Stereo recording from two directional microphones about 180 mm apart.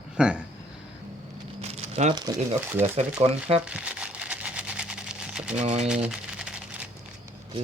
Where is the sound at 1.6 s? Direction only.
35° right (ahead or behind).